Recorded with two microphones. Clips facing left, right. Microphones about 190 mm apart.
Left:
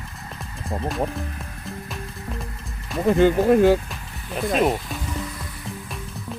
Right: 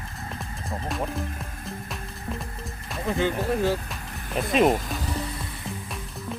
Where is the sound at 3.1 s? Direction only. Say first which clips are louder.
Left 9 dB; 55° left (ahead or behind).